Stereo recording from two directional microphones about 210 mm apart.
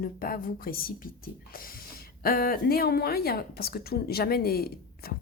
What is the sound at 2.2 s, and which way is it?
Speech, 45° left (ahead or behind).